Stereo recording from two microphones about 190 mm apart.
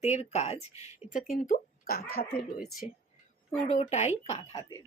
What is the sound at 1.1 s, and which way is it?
Speech, 45° left (ahead or behind).